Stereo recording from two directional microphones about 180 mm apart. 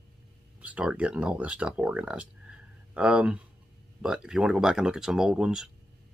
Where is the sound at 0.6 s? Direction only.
5° right (ahead or behind).